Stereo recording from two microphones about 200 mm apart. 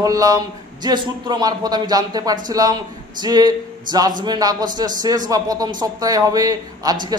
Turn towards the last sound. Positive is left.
turn(degrees=-20)  # may be behind; listen again after turning